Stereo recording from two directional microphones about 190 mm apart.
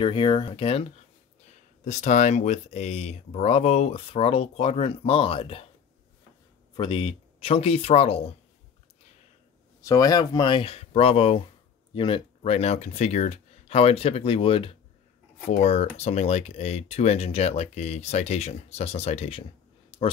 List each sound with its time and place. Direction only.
0.0 s speech: 25° left (ahead or behind)
1.9 s speech: 40° left (ahead or behind)
6.8 s speech: 25° left (ahead or behind)
9.8 s speech: 15° left (ahead or behind); by 19.4 s 30° left (ahead or behind)